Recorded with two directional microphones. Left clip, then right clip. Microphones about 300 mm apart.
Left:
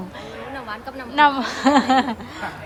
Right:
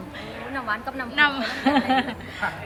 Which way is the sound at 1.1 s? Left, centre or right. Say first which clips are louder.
Left 5 dB; centre.